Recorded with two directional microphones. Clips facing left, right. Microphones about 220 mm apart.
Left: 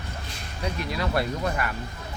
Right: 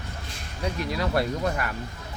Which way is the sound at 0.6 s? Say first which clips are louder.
Right 1 dB; 40° right (ahead or behind).